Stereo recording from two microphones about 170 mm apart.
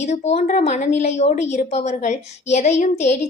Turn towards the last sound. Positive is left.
turn(degrees=45)  # may be behind; listen again after turning